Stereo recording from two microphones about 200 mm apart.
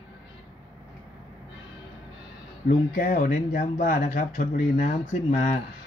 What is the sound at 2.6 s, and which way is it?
Speech, 40° left (ahead or behind).